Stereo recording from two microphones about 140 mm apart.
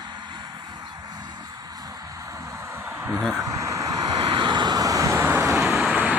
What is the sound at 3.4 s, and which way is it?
Vehicle, 25° right (ahead or behind).